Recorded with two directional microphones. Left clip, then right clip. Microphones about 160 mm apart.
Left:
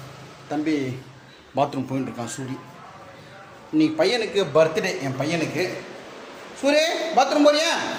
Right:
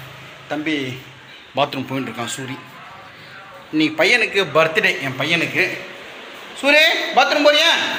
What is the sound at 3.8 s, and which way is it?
A man's voice, centre (ahead or behind).